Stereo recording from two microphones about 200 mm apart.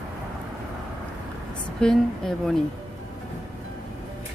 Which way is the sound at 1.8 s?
5° left (ahead or behind).